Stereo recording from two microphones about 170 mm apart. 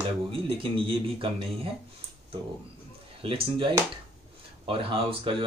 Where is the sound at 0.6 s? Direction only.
30° right (ahead or behind).